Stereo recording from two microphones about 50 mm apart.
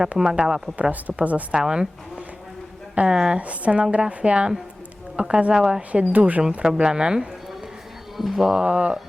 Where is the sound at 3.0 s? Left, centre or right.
Centre.